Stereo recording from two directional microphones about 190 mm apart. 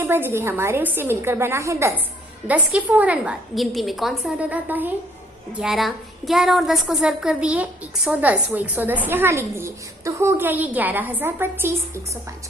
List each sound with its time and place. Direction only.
0.0 s a woman's voice: 10° right (ahead or behind)